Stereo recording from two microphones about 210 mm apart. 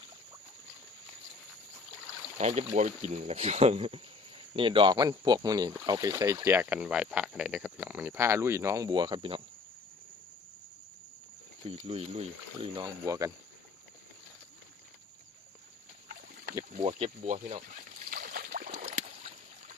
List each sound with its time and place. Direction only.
2.4 s speech: 30° right (ahead or behind)
11.7 s speech: 30° right (ahead or behind)
16.0 s pig: 40° right (ahead or behind)
16.7 s a sound: 30° right (ahead or behind)